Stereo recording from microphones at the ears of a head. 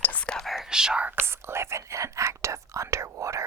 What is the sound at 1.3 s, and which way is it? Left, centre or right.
Whispering, right.